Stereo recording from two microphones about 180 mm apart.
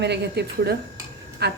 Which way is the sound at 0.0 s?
70° right (ahead or behind).